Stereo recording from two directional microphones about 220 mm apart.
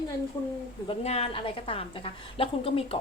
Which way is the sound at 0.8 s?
30° left (ahead or behind).